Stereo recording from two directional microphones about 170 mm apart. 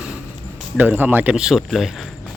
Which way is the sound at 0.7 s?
10° right (ahead or behind).